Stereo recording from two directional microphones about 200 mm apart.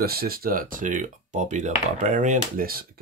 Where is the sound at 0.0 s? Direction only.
50° right (ahead or behind).